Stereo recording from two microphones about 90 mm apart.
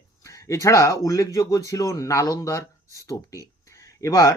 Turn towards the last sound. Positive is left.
turn(degrees=35)  # may be behind; listen again after turning